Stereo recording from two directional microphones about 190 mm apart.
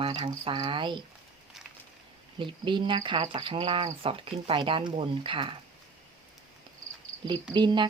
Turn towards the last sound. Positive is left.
turn(degrees=-25)  # may be behind; listen again after turning